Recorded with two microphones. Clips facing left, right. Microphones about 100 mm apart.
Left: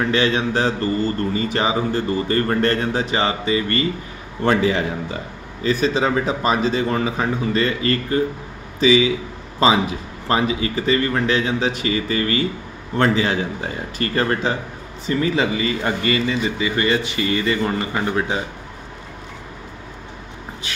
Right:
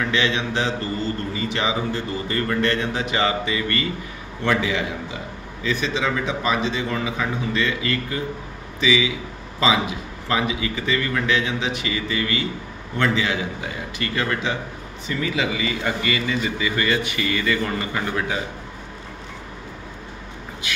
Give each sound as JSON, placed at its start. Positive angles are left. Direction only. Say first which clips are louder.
{"t": 0.0, "sound": "a man's voice", "louder": "left 4 dB", "side_deg": 40}
{"t": 10.2, "sound": "a man's voice", "louder": "left 4 dB", "side_deg": 35}